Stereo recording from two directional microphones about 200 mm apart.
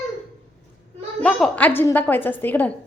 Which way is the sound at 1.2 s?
5° left (ahead or behind).